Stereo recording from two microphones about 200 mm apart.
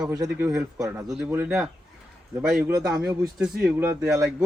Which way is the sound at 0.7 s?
15° right (ahead or behind).